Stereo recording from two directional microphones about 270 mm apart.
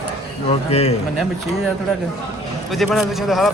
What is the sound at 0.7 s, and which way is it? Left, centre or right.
Speech, left.